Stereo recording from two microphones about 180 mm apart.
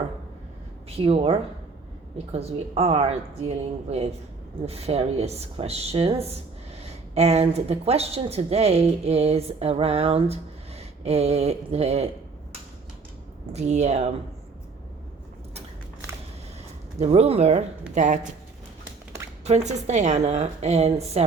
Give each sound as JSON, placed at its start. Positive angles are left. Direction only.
{"t": 0.9, "sound": "a woman's voice", "side_deg": -35}
{"t": 13.5, "sound": "a woman's voice", "side_deg": -40}
{"t": 17.0, "sound": "a woman's voice", "side_deg": -35}
{"t": 19.5, "sound": "a woman's voice", "side_deg": -40}